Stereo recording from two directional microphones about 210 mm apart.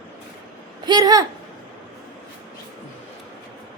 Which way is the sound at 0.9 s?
20° right (ahead or behind).